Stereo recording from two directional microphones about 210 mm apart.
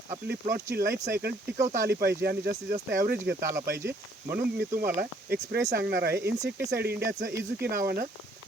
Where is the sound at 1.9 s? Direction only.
50° right (ahead or behind).